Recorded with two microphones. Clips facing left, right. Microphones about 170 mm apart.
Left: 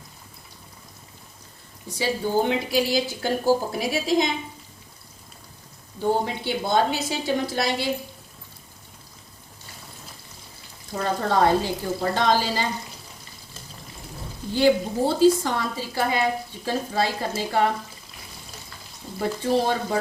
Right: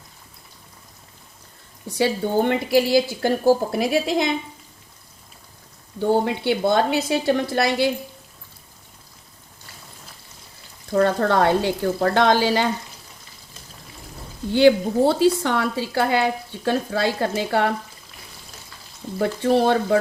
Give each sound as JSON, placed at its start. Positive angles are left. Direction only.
{"t": 2.0, "sound": "a woman's voice", "side_deg": -60}
{"t": 6.0, "sound": "a woman's voice", "side_deg": -65}
{"t": 10.9, "sound": "speech", "side_deg": -65}
{"t": 14.5, "sound": "speech", "side_deg": -65}
{"t": 19.2, "sound": "a woman's voice", "side_deg": -65}